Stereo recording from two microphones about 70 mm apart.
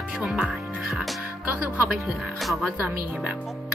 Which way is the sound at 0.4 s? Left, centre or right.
Centre.